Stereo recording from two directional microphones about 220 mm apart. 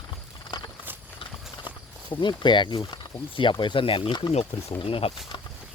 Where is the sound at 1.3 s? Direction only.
Centre (ahead or behind).